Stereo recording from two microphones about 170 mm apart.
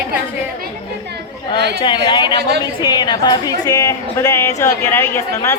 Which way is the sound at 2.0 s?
30° left (ahead or behind).